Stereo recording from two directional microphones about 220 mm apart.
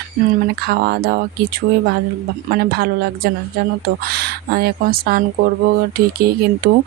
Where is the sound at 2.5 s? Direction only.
45° right (ahead or behind).